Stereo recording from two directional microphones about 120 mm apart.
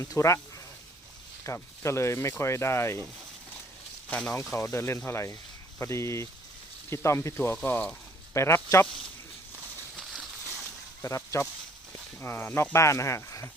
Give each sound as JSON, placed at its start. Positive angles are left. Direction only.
{"t": 0.0, "sound": "speech", "side_deg": 25}
{"t": 1.5, "sound": "speech", "side_deg": 25}
{"t": 4.5, "sound": "speech", "side_deg": 25}
{"t": 10.0, "sound": "a sound", "side_deg": -5}
{"t": 11.0, "sound": "speech", "side_deg": 25}